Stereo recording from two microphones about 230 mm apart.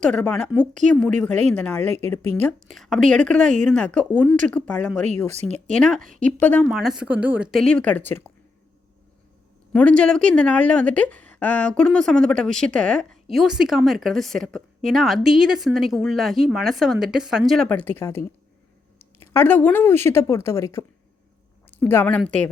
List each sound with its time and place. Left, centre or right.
0.0 s a woman's voice: centre
5.3 s speech: right
6.1 s a woman's voice: centre
9.7 s a woman's voice: centre